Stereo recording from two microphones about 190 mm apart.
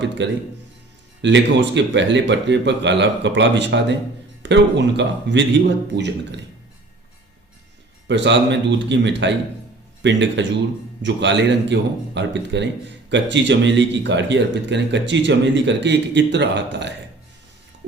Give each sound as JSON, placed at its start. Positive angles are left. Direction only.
{"t": 0.2, "sound": "speech", "side_deg": -70}
{"t": 8.0, "sound": "speech", "side_deg": -70}